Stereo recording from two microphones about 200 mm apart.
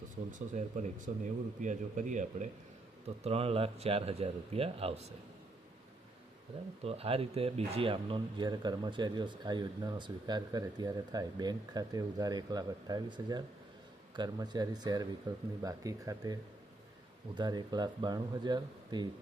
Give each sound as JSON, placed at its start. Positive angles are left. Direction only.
{"t": 0.3, "sound": "speech", "side_deg": -40}
{"t": 6.8, "sound": "speech", "side_deg": -30}